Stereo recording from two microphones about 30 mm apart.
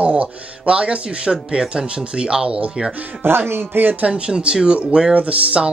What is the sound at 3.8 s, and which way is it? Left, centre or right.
Speech, right.